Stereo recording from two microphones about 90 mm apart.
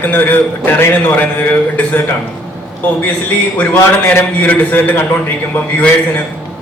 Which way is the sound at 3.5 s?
20° left (ahead or behind).